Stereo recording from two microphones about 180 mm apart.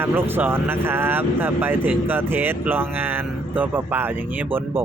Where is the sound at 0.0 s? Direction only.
10° right (ahead or behind).